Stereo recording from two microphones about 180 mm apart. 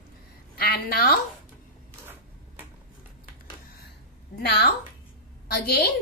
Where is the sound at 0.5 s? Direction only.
55° left (ahead or behind).